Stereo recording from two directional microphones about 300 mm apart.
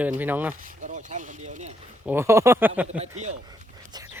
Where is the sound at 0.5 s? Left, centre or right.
Right.